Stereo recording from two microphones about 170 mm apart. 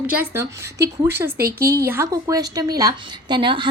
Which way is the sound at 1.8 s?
15° right (ahead or behind).